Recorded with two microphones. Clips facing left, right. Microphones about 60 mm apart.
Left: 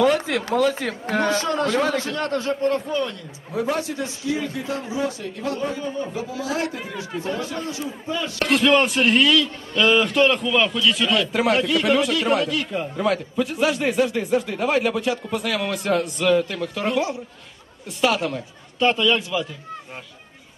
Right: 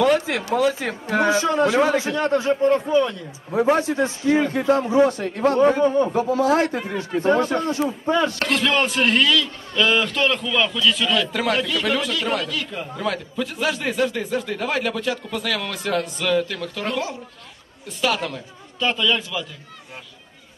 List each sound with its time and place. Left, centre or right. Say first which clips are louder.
0.0 s a man's voice: even; centre; by 8.4 s right
8.6 s speech: left 3 dB; centre
18.8 s a man's voice: left 3 dB; left
19.0 s speech: left 2 dB; centre